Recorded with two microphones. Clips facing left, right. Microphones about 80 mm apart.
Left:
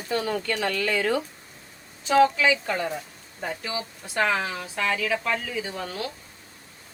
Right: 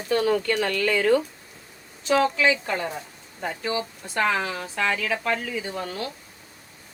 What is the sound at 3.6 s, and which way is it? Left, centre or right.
A woman's voice, right.